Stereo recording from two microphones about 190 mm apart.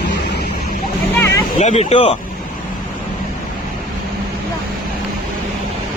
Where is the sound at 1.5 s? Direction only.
35° left (ahead or behind).